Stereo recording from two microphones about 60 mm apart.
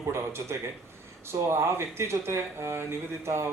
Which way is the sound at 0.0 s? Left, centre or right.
Right.